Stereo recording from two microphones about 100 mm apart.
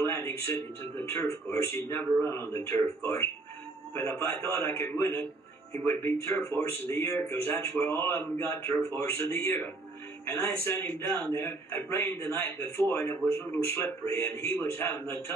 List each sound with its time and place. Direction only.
0.0 s music: 30° left (ahead or behind)
1.0 s a man's voice: 25° left (ahead or behind)